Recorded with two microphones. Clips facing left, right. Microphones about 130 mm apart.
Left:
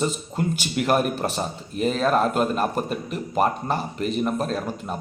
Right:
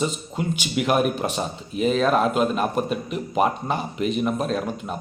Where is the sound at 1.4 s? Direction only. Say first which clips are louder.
Right 1 dB; centre (ahead or behind).